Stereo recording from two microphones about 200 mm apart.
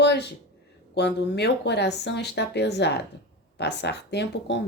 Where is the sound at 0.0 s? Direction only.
55° left (ahead or behind).